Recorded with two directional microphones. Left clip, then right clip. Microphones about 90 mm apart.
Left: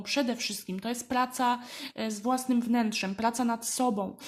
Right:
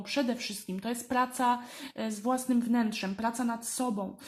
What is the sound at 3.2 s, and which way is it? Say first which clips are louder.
Speech: left 4 dB; 40° left (ahead or behind).